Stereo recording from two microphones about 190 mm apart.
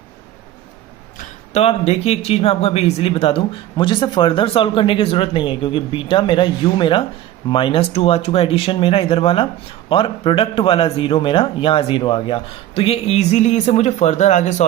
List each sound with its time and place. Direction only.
1.2 s speech: 35° left (ahead or behind)